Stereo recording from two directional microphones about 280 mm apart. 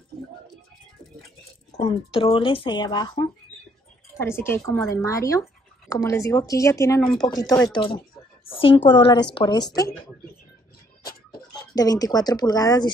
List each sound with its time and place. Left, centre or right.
1.8 s a woman's voice: left
11.7 s speech: centre